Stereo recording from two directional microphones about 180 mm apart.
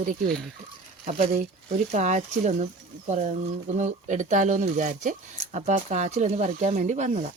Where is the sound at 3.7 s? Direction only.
40° right (ahead or behind).